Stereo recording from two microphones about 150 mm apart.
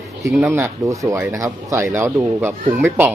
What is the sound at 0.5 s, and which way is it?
Speech, 20° right (ahead or behind).